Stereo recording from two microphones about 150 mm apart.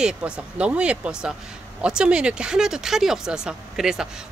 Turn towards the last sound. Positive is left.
turn(degrees=-5)  # may be behind; listen again after turning